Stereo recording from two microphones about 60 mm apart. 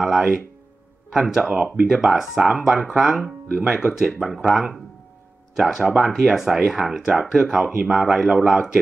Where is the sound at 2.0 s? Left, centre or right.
Centre.